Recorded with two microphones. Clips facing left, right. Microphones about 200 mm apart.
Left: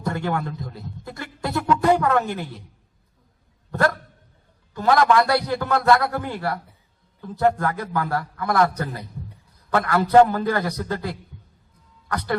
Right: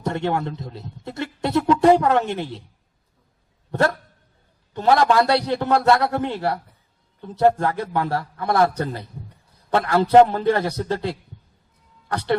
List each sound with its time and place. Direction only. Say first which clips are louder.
0.0 s speech: right 2 dB; 25° right (ahead or behind)
3.7 s a man's voice: right 1 dB; 25° right (ahead or behind)